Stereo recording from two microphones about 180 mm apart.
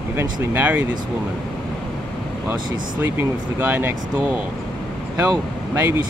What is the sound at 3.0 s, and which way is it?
Speech, 10° right (ahead or behind).